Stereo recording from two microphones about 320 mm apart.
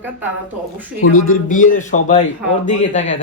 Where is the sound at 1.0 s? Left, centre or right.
Left.